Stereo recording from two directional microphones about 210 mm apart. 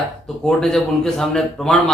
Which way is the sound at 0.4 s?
Centre (ahead or behind).